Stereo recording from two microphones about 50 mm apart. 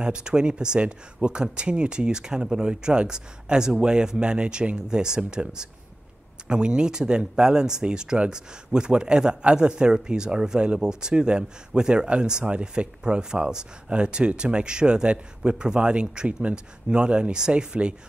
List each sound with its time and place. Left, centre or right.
0.0 s speech: centre